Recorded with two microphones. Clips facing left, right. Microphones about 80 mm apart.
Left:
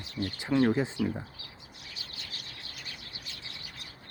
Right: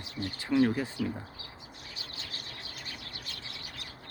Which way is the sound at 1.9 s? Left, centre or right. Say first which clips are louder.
Right 1 dB; right.